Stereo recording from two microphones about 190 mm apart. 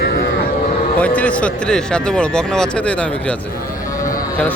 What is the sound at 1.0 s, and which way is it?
Speech, 5° left (ahead or behind).